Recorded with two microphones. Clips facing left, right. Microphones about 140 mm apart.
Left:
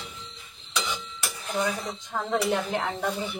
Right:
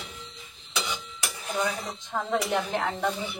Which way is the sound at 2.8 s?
15° left (ahead or behind).